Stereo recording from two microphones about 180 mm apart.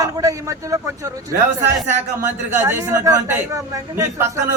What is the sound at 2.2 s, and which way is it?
A man's voice, 15° right (ahead or behind).